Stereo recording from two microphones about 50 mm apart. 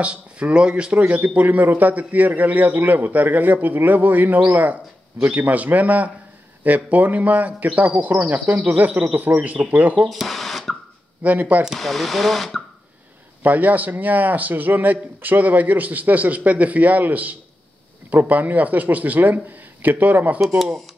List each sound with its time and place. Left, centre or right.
0.0 s speech: right
0.9 s a man's voice: right
10.0 s speech: centre
11.2 s a man's voice: right
11.8 s speech: centre
13.4 s a man's voice: right
20.3 s speech: centre